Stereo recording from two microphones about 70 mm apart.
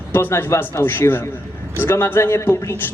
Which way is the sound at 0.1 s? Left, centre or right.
Left.